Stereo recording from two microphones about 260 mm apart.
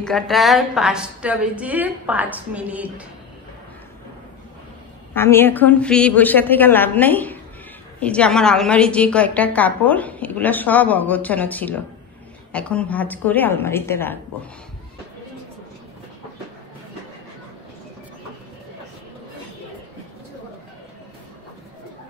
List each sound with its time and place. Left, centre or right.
0.0 s a woman's voice: centre
5.1 s a woman's voice: centre